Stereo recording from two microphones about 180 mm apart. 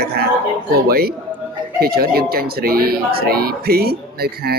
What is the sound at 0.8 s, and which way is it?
Speech, 60° right (ahead or behind).